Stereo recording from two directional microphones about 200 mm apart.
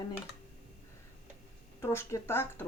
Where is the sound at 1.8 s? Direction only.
10° left (ahead or behind).